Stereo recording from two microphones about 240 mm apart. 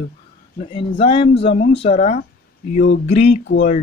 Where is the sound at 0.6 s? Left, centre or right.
Left.